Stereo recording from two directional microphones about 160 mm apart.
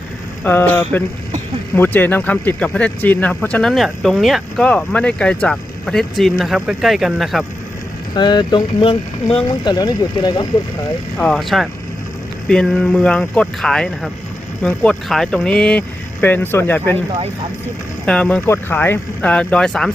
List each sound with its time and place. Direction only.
0.4 s speech: 10° left (ahead or behind)
8.1 s speech: 25° left (ahead or behind)
11.2 s speech: centre (ahead or behind)
18.0 s speech: 5° left (ahead or behind)